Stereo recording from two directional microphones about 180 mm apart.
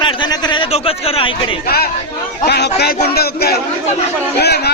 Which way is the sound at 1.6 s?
60° left (ahead or behind).